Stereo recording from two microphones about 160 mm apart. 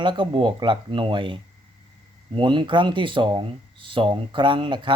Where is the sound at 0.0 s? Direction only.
30° right (ahead or behind).